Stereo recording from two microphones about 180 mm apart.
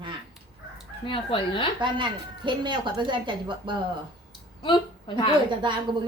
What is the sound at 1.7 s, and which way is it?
A woman's voice, 25° right (ahead or behind).